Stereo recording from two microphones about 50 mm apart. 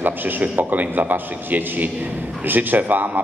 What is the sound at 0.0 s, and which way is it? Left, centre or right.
A man's voice, right.